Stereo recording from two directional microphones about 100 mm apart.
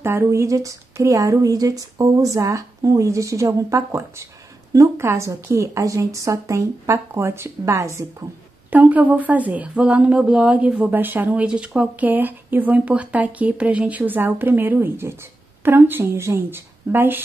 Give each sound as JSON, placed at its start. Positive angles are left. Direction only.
{"t": 0.0, "sound": "a woman's voice", "side_deg": -25}
{"t": 8.6, "sound": "a woman's voice", "side_deg": -15}